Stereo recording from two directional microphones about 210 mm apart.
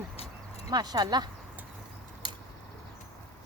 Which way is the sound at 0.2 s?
30° left (ahead or behind).